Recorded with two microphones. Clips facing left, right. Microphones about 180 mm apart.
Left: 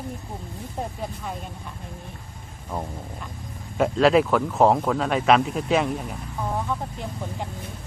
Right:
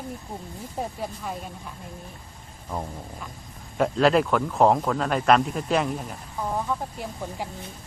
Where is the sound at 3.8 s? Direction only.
Centre (ahead or behind).